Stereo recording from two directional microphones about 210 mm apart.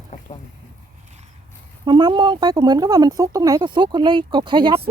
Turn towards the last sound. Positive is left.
turn(degrees=-20)  # may be behind; listen again after turning